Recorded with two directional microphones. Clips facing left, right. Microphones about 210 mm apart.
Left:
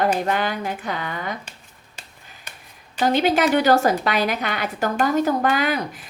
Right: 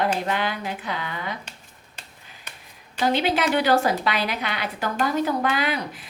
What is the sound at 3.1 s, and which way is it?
A woman's voice, 45° left (ahead or behind).